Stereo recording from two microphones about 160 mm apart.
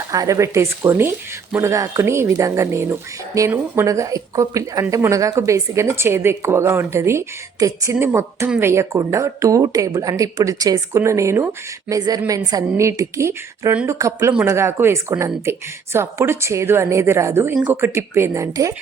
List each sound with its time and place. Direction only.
0.1 s speech: 20° right (ahead or behind)